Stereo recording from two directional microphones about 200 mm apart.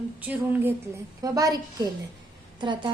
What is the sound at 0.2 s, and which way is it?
A woman's voice, 10° right (ahead or behind).